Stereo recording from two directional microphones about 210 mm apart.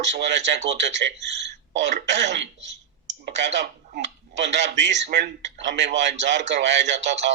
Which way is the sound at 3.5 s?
55° right (ahead or behind).